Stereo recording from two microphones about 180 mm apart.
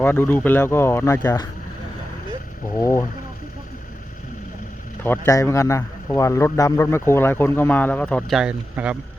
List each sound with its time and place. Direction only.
0.0 s a man's voice: 10° left (ahead or behind)
2.7 s a man's voice: 15° left (ahead or behind)
5.0 s a man's voice: 15° left (ahead or behind); by 9.0 s 5° right (ahead or behind)